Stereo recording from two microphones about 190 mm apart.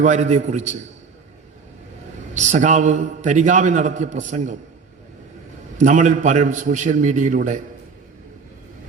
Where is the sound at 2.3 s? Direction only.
40° right (ahead or behind).